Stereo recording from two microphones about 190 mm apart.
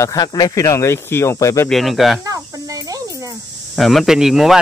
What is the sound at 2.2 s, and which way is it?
Cricket, 15° right (ahead or behind).